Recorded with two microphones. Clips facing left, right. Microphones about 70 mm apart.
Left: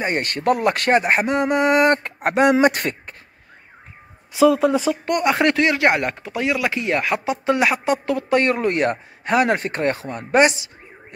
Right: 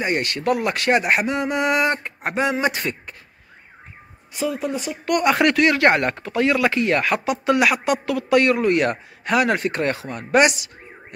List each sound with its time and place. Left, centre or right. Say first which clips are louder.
0.0 s speech: left 1 dB; left
2.2 s speech: left 6 dB; left
4.5 s speech: left 8 dB; left
5.0 s speech: right 4 dB; left
5.8 s speech: right 1 dB; centre
7.2 s speech: even; left